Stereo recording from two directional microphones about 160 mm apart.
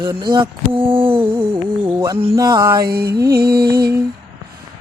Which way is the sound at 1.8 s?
15° right (ahead or behind).